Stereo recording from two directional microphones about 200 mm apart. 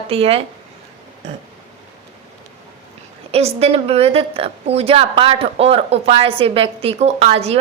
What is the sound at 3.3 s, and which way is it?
A woman's voice, 30° right (ahead or behind).